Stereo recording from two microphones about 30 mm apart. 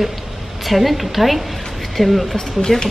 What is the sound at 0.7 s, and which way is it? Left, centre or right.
A woman's voice, centre.